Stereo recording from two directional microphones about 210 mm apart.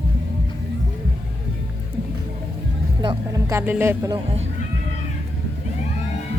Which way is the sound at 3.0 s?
15° right (ahead or behind).